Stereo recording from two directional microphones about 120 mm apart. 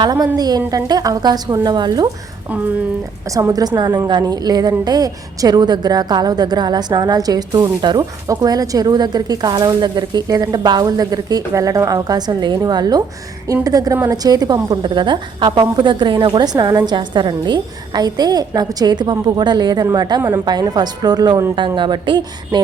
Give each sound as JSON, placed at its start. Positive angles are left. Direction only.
{"t": 0.0, "sound": "a woman's voice", "side_deg": -35}
{"t": 3.5, "sound": "a woman's voice", "side_deg": -35}
{"t": 20.2, "sound": "a woman's voice", "side_deg": -25}
{"t": 20.5, "sound": "a woman's voice", "side_deg": -35}